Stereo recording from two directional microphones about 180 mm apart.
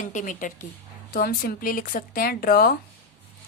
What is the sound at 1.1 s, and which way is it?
Speech, 55° left (ahead or behind).